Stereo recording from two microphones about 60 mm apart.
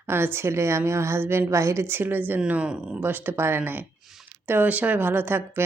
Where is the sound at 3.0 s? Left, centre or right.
Right.